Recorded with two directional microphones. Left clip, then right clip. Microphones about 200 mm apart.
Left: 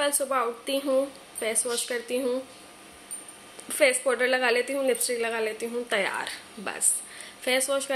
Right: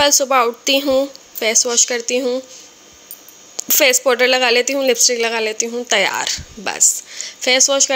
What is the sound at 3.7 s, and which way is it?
A woman's voice, 50° right (ahead or behind).